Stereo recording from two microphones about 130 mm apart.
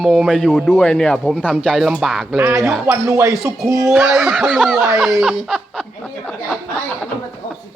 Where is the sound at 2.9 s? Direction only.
25° right (ahead or behind).